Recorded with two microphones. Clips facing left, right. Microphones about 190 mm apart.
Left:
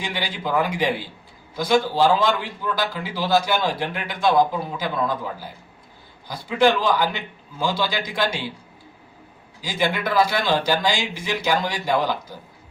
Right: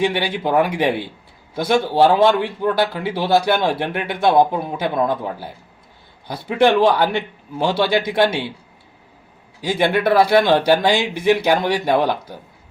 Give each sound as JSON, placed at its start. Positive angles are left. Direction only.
{"t": 0.0, "sound": "speech", "side_deg": -60}
{"t": 9.6, "sound": "speech", "side_deg": -60}